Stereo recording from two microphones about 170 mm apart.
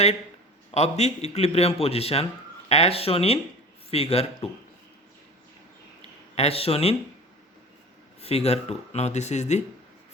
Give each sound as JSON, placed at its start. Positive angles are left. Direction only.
{"t": 0.7, "sound": "a man's voice", "side_deg": 40}
{"t": 6.0, "sound": "a sound", "side_deg": 40}
{"t": 8.2, "sound": "speech", "side_deg": 35}